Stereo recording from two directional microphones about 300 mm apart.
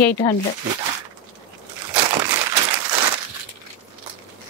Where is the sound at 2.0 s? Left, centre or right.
Centre.